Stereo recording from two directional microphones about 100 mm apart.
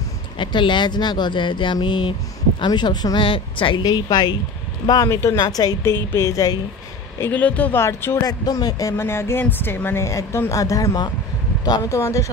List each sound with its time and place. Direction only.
0.4 s speech: 50° left (ahead or behind)
3.3 s speech: 60° left (ahead or behind); by 6.6 s 35° left (ahead or behind)
7.2 s a woman's voice: 15° left (ahead or behind)
8.3 s speech: 40° left (ahead or behind)
8.9 s a woman's voice: 25° left (ahead or behind)